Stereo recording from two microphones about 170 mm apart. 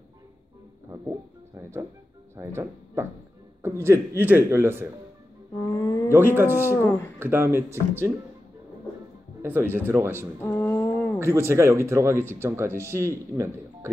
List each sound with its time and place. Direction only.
1.5 s speech: 15° right (ahead or behind)
5.8 s speech: 20° left (ahead or behind)
6.0 s speech: 15° right (ahead or behind)
6.7 s speech: 15° left (ahead or behind)
7.2 s speech: 15° right (ahead or behind)
9.4 s speech: 15° right (ahead or behind)
10.4 s a sound: 10° left (ahead or behind)
11.1 s speech: 15° right (ahead or behind)